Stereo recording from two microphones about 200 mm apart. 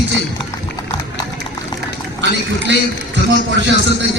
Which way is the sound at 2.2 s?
60° right (ahead or behind).